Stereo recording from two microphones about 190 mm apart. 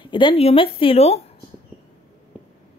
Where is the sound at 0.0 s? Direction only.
25° left (ahead or behind).